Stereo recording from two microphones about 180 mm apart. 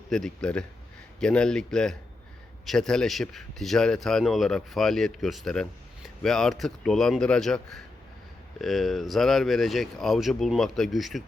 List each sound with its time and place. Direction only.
0.1 s a man's voice: 5° left (ahead or behind)